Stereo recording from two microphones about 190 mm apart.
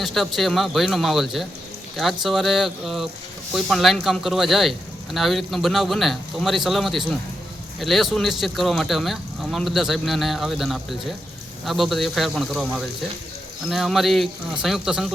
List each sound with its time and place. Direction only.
0.0 s a man's voice: centre (ahead or behind)